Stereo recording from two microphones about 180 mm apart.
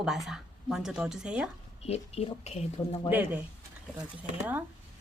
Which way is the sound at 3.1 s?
10° right (ahead or behind).